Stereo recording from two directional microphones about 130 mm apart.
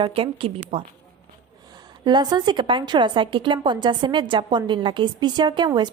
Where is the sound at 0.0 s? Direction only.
45° right (ahead or behind).